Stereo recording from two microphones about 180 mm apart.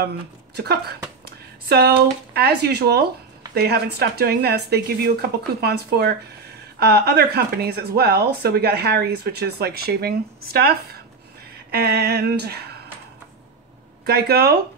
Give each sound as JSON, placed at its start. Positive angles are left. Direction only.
{"t": 0.6, "sound": "speech", "side_deg": -65}
{"t": 14.0, "sound": "speech", "side_deg": -65}